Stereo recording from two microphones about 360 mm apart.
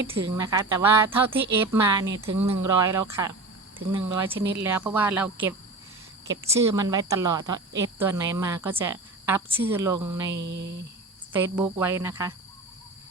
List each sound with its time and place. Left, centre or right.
0.0 s a woman's voice: centre
10.3 s a sound: right
11.3 s a woman's voice: centre